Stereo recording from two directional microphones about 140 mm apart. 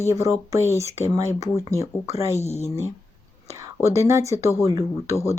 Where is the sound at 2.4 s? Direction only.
50° left (ahead or behind).